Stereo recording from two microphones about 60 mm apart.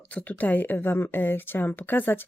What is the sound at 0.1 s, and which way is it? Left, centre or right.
Speech, left.